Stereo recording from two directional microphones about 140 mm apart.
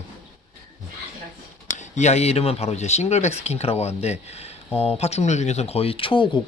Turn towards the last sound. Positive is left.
turn(degrees=40)  # may be behind; listen again after turning